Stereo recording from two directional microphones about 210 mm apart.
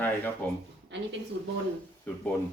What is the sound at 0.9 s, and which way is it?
Speech, 55° right (ahead or behind).